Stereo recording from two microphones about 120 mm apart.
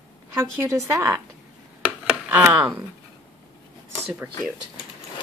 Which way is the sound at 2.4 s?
15° right (ahead or behind).